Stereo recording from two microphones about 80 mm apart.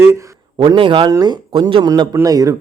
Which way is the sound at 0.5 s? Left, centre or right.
Right.